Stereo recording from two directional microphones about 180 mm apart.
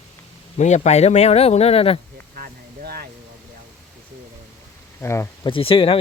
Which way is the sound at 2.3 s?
55° right (ahead or behind).